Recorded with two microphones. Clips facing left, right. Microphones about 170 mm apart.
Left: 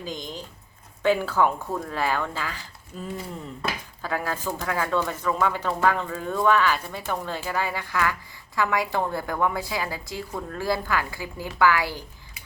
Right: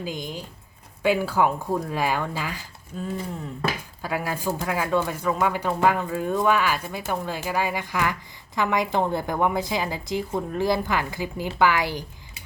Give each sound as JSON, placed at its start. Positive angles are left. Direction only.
{"t": 0.0, "sound": "speech", "side_deg": -10}
{"t": 2.9, "sound": "speech", "side_deg": 0}
{"t": 4.0, "sound": "a woman's voice", "side_deg": -10}